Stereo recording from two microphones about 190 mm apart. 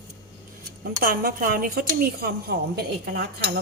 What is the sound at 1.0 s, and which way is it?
A woman's voice, 50° right (ahead or behind).